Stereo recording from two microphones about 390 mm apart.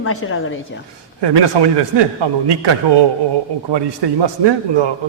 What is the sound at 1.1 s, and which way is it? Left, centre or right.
A man's voice, right.